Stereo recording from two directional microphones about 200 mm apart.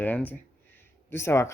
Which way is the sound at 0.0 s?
10° left (ahead or behind).